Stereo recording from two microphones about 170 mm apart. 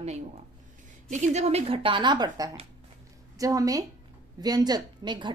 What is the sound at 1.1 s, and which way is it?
A woman's voice, 45° right (ahead or behind).